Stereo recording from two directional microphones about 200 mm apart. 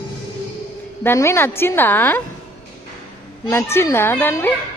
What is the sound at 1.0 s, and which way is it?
Speech, 15° left (ahead or behind).